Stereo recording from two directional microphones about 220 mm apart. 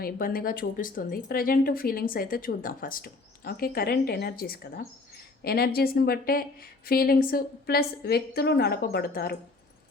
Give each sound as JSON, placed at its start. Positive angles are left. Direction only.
{"t": 0.0, "sound": "a woman's voice", "side_deg": 40}